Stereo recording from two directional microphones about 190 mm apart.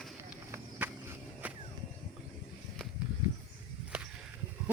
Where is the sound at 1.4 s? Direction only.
10° right (ahead or behind).